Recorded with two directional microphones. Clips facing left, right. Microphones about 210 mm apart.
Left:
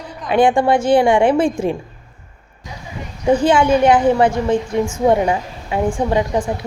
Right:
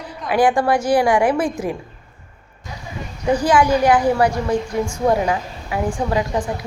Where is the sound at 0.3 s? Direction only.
25° left (ahead or behind).